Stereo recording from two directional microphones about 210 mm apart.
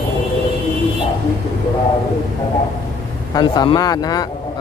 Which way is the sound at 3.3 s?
20° left (ahead or behind).